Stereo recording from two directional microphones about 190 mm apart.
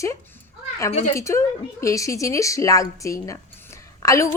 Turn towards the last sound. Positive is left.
turn(degrees=15)  # may be behind; listen again after turning